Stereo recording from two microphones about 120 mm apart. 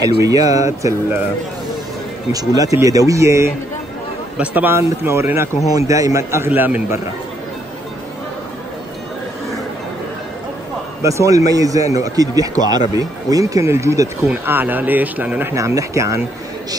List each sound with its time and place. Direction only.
0.0 s a man's voice: 30° right (ahead or behind)
2.3 s a man's voice: 30° right (ahead or behind)
11.0 s a man's voice: 25° right (ahead or behind)
15.5 s a man's voice: 25° right (ahead or behind)